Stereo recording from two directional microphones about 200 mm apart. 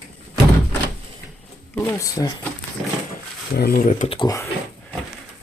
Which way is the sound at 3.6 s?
50° left (ahead or behind).